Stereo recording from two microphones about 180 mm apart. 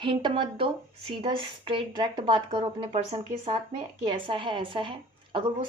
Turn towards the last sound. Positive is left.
turn(degrees=-30)  # may be behind; listen again after turning